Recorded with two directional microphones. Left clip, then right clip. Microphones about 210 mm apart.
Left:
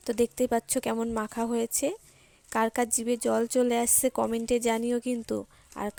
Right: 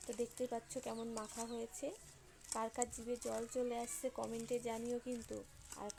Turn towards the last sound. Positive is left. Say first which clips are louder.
# left 14 dB
turn(degrees=50)  # may be behind; listen again after turning